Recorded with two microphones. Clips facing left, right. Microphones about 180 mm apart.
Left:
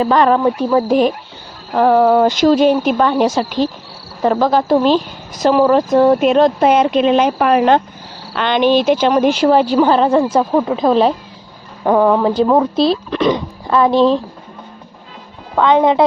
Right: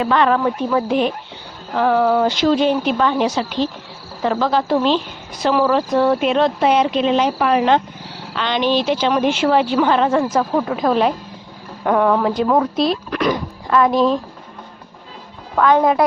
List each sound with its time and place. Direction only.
0.0 s speech: 35° left (ahead or behind)
15.5 s speech: 20° left (ahead or behind)